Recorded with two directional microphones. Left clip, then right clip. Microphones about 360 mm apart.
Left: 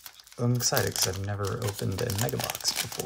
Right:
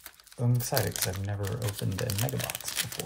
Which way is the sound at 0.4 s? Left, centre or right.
Centre.